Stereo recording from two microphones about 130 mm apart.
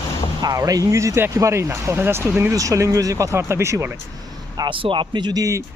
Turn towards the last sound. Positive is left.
turn(degrees=-25)  # may be behind; listen again after turning